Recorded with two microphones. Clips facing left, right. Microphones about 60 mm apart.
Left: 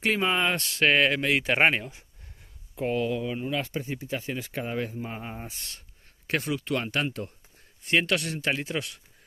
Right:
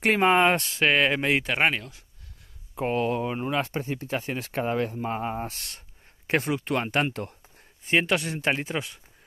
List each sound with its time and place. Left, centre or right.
0.0 s speech: right
0.7 s speech: centre
1.4 s speech: centre
2.7 s speech: right
4.6 s speech: right
6.2 s speech: right
7.1 s speech: right
7.8 s speech: centre